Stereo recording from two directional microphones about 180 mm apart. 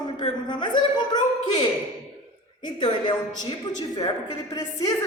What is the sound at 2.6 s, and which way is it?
A woman's voice, 25° left (ahead or behind).